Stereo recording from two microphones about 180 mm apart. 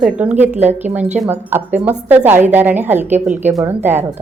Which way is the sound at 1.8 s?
10° right (ahead or behind).